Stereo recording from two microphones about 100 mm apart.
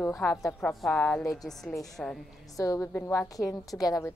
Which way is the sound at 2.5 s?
30° left (ahead or behind).